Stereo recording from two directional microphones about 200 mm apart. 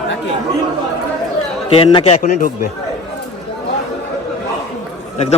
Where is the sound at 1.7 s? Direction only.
30° left (ahead or behind).